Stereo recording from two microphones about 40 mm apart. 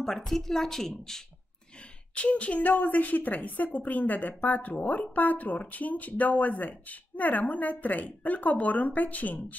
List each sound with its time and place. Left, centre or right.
0.0 s a woman's voice: centre
2.1 s speech: left